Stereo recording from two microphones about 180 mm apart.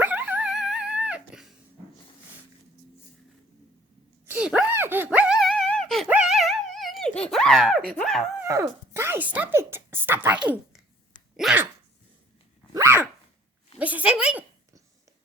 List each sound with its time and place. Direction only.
0.0 s dog: 10° right (ahead or behind)
4.3 s a sound: 5° right (ahead or behind)
6.1 s music: 5° right (ahead or behind)
7.9 s speech: centre (ahead or behind)
8.4 s speech: 15° right (ahead or behind)
11.3 s dog: centre (ahead or behind)
12.7 s dog: 15° right (ahead or behind)
13.7 s a sound: 10° right (ahead or behind)